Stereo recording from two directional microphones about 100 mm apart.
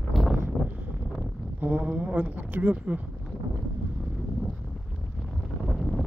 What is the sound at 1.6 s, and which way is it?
Speech, 20° right (ahead or behind).